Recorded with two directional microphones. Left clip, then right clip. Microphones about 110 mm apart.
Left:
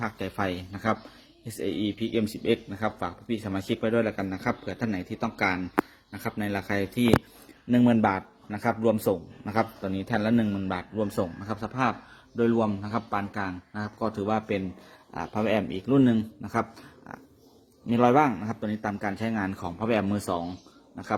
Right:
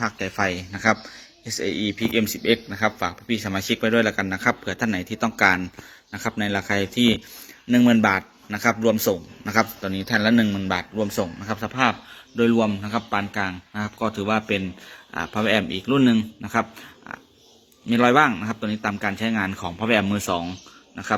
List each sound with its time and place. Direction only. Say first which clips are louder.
0.0 s speech: right 6 dB; 10° left (ahead or behind)
11.7 s speech: right 6 dB; 5° right (ahead or behind)
17.8 s speech: right 4 dB; 10° left (ahead or behind)
20.9 s pig: right 6 dB; 10° right (ahead or behind)